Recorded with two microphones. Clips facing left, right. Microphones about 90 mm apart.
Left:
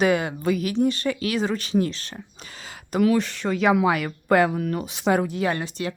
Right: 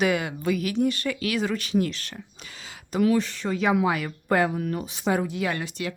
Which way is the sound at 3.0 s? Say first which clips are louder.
Left 2 dB; 80° left.